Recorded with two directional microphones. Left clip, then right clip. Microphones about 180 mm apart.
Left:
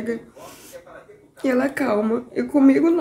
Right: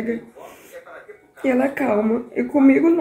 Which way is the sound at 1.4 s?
15° left (ahead or behind).